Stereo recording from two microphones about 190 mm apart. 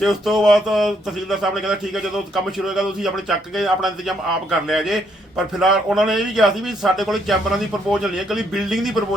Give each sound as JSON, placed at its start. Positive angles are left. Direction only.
{"t": 0.0, "sound": "speech", "side_deg": 0}